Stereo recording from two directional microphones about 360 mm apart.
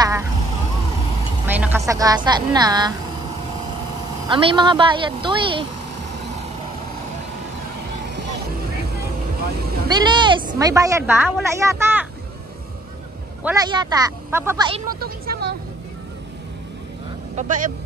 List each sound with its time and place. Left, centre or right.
0.0 s vehicle: centre
1.5 s music: centre
1.8 s a woman's voice: centre
4.3 s a woman's voice: centre
8.1 s music: right
9.8 s a woman's voice: centre
13.4 s a woman's voice: centre
15.0 s vehicle: right
17.4 s speech: right